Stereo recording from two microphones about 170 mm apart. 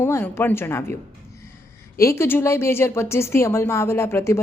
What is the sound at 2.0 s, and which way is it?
Speech, 15° left (ahead or behind).